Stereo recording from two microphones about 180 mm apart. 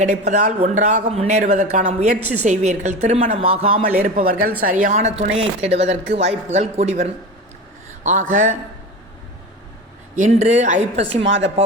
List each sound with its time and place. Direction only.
0.0 s speech: 40° right (ahead or behind)
4.0 s speech: 50° right (ahead or behind)
10.2 s speech: 40° right (ahead or behind)
11.3 s speech: 90° right